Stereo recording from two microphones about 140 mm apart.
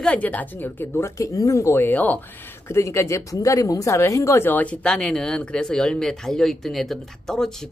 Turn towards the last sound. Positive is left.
turn(degrees=5)  # may be behind; listen again after turning